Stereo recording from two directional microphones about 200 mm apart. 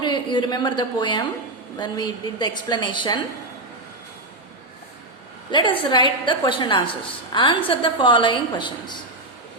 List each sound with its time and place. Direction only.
0.0 s a woman's voice: 20° left (ahead or behind)
5.5 s a woman's voice: 20° left (ahead or behind)